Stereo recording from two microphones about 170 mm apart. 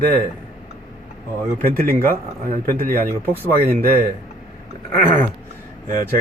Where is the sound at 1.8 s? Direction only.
60° right (ahead or behind).